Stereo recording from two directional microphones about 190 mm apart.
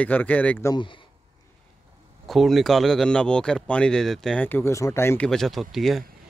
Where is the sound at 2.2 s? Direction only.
Centre (ahead or behind).